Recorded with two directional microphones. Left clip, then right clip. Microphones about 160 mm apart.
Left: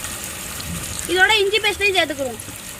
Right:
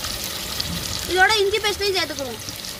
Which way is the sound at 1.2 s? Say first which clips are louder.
Left 2 dB; 30° left (ahead or behind).